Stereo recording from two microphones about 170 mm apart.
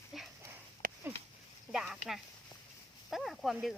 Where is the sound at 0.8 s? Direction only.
55° right (ahead or behind).